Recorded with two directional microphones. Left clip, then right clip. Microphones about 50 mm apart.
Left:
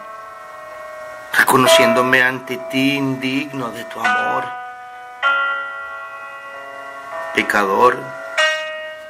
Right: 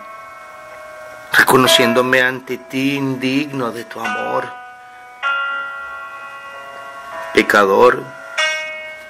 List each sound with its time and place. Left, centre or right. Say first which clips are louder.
1.3 s a sound: right 1 dB; right
2.0 s speech: even; right
4.0 s speech: left 4 dB; left
5.2 s tubular bells: left 2 dB; left
7.1 s music: left 1 dB; left
7.3 s speech: right 4 dB; right
8.0 s music: left 2 dB; left